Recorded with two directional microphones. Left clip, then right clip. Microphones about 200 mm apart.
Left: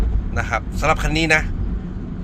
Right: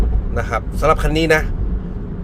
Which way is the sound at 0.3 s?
15° right (ahead or behind).